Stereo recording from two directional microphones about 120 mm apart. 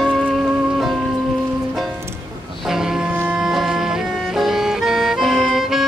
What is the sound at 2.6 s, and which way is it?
Music, 5° right (ahead or behind).